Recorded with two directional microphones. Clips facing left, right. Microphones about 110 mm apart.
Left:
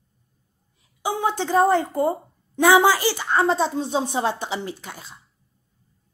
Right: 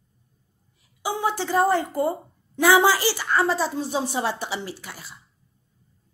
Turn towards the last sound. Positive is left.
turn(degrees=20)  # may be behind; listen again after turning